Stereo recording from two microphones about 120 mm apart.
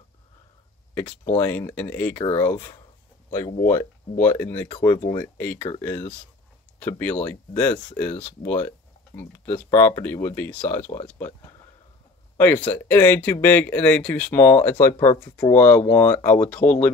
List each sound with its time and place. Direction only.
0.9 s speech: 15° left (ahead or behind)
4.2 s speech: 15° left (ahead or behind)
12.4 s speech: 15° left (ahead or behind)
15.1 s speech: 10° left (ahead or behind)